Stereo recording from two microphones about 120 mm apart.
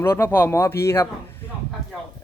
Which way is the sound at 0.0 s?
20° left (ahead or behind).